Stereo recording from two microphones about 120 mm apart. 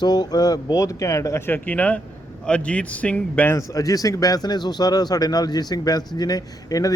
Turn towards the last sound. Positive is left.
turn(degrees=30)  # may be behind; listen again after turning